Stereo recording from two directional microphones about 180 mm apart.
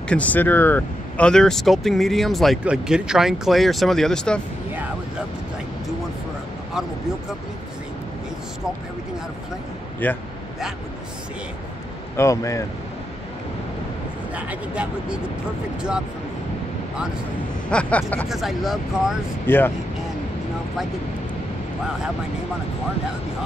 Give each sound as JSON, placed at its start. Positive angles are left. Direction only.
{"t": 0.1, "sound": "speech", "side_deg": 10}
{"t": 10.0, "sound": "speech", "side_deg": 10}
{"t": 12.2, "sound": "speech", "side_deg": 15}
{"t": 14.3, "sound": "speech", "side_deg": -5}
{"t": 17.6, "sound": "speech", "side_deg": 5}
{"t": 19.4, "sound": "speech", "side_deg": 10}